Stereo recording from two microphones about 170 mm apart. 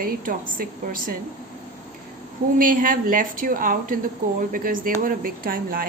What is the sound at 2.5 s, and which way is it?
A woman's voice, 55° right (ahead or behind).